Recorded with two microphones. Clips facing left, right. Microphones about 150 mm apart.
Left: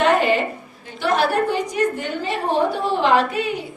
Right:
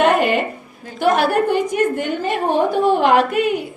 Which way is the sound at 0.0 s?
55° right (ahead or behind).